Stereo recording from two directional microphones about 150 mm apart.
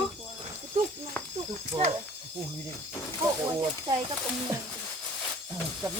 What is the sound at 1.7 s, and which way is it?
Snake, 30° right (ahead or behind).